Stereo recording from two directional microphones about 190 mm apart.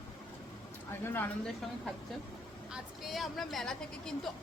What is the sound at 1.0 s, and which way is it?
Speech, 10° left (ahead or behind).